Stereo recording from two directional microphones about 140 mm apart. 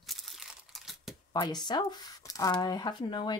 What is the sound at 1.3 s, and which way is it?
Speech, 30° left (ahead or behind).